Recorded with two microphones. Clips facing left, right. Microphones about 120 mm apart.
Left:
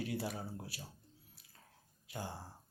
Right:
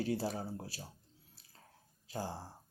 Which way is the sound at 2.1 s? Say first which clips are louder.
Right 4 dB; 35° right (ahead or behind).